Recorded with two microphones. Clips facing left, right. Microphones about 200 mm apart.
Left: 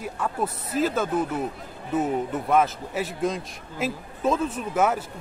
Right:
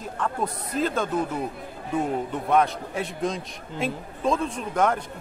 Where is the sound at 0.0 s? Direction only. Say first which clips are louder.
Even; 5° left (ahead or behind).